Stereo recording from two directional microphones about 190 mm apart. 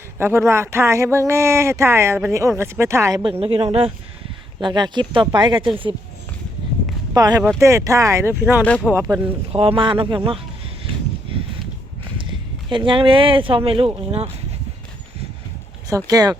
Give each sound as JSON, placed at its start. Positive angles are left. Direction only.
{"t": 0.2, "sound": "speech", "side_deg": -15}
{"t": 3.4, "sound": "speech", "side_deg": -30}
{"t": 7.1, "sound": "speech", "side_deg": -20}
{"t": 8.6, "sound": "speech", "side_deg": 5}
{"t": 8.9, "sound": "speech", "side_deg": -15}
{"t": 9.5, "sound": "speech", "side_deg": -30}
{"t": 10.8, "sound": "a sound", "side_deg": -30}
{"t": 12.2, "sound": "speech", "side_deg": -25}
{"t": 16.0, "sound": "speech", "side_deg": -20}